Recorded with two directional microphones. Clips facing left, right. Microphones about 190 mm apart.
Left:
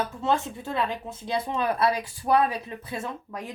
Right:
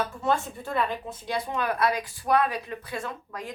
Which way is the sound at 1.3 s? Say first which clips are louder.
Left 2 dB; 25° left (ahead or behind).